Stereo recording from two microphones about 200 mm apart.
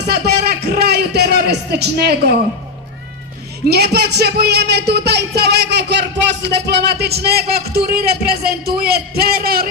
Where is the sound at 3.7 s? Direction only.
55° right (ahead or behind).